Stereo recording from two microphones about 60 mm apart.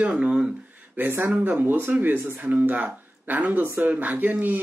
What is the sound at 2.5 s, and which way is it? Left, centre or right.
Speech, right.